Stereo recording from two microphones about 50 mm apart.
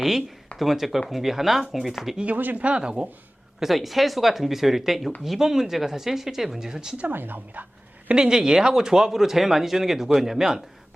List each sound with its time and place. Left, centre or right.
0.0 s speech: centre
2.2 s a woman's voice: right
2.6 s speech: centre
3.6 s speech: centre
7.1 s a woman's voice: right
8.1 s speech: centre